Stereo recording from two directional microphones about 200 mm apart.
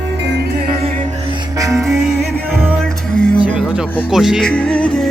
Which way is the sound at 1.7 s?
Centre (ahead or behind).